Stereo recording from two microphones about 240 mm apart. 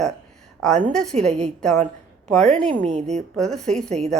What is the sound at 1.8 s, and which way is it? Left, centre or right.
Speech, right.